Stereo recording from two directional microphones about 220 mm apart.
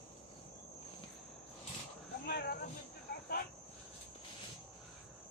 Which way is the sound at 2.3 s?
45° left (ahead or behind).